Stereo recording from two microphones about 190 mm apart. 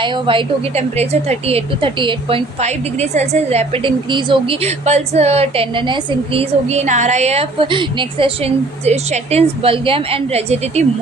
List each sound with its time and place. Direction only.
0.0 s a woman's voice: 25° right (ahead or behind)